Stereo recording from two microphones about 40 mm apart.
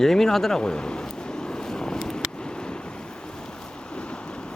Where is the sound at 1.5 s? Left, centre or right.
Centre.